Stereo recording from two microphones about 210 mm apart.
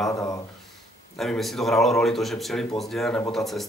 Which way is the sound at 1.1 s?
Centre (ahead or behind).